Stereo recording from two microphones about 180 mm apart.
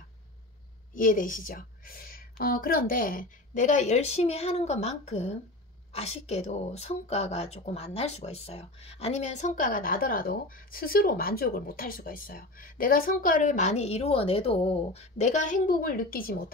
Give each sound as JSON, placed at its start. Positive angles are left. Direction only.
{"t": 0.9, "sound": "a woman's voice", "side_deg": 50}